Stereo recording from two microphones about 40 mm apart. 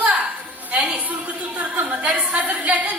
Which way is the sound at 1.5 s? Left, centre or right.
Right.